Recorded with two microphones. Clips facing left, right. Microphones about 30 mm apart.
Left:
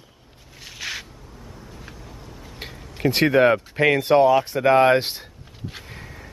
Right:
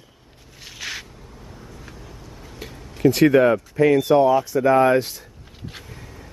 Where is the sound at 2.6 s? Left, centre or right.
Left.